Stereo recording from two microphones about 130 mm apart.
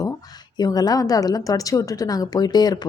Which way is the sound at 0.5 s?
30° left (ahead or behind).